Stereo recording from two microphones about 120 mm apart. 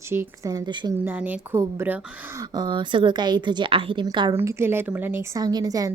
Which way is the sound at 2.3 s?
35° right (ahead or behind).